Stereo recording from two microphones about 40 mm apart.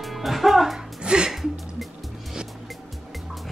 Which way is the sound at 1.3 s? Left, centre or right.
Centre.